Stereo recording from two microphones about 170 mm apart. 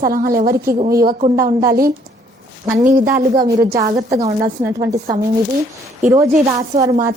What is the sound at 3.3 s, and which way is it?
Speech, 20° right (ahead or behind).